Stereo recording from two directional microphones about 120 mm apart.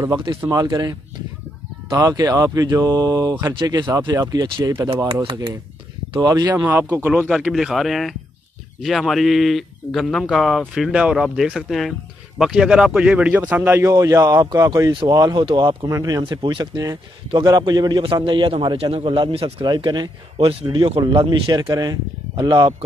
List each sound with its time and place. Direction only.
0.3 s speech: 25° right (ahead or behind)
4.8 s a man's voice: 45° right (ahead or behind)
6.1 s speech: 35° right (ahead or behind)
6.5 s speech: 15° right (ahead or behind)
7.2 s a man's voice: 5° right (ahead or behind); by 22.8 s 35° right (ahead or behind)